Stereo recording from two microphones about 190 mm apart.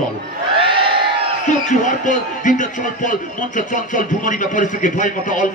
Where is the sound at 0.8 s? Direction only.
25° right (ahead or behind).